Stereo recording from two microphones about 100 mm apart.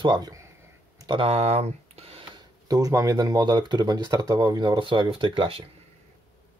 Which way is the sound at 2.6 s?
35° right (ahead or behind).